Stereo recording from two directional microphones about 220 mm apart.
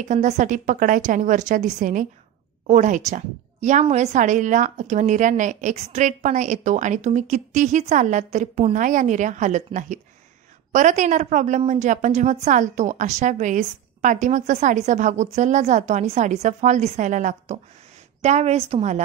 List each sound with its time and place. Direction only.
0.0 s a woman's voice: 35° right (ahead or behind)